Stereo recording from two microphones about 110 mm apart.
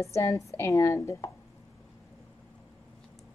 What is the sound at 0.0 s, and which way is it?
Speech, 30° left (ahead or behind).